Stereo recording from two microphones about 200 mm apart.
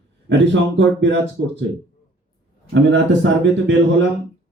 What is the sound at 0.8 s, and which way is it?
Speech, 65° right (ahead or behind).